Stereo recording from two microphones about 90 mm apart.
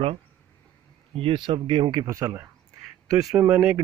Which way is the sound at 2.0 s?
40° right (ahead or behind).